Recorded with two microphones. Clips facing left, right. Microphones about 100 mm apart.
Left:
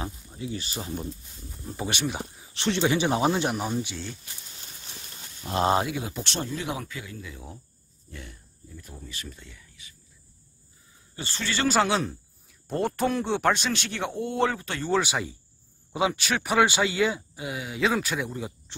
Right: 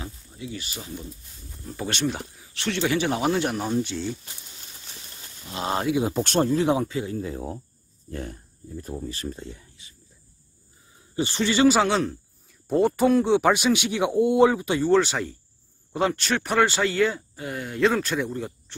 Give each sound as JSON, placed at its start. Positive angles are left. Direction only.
{"t": 0.0, "sound": "speech", "side_deg": 30}
{"t": 1.6, "sound": "speech", "side_deg": 15}
{"t": 2.3, "sound": "speech", "side_deg": 25}
{"t": 3.5, "sound": "speech", "side_deg": 5}
{"t": 6.1, "sound": "speech", "side_deg": -45}
{"t": 11.1, "sound": "speech", "side_deg": -20}
{"t": 11.6, "sound": "speech", "side_deg": 0}
{"t": 14.9, "sound": "speech", "side_deg": 10}
{"t": 18.7, "sound": "oink", "side_deg": 20}